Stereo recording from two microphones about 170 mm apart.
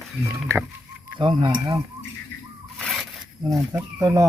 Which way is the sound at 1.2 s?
30° right (ahead or behind).